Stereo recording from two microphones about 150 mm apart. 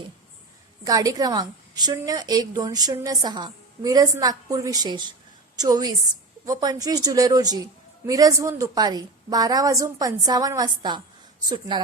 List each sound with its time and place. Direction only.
0.9 s a woman's voice: 25° right (ahead or behind)